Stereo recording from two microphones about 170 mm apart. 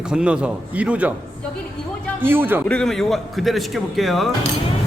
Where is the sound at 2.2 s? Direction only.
10° right (ahead or behind).